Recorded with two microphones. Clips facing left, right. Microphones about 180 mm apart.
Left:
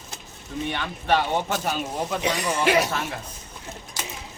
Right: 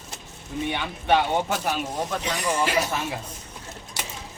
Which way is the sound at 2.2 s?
65° left (ahead or behind).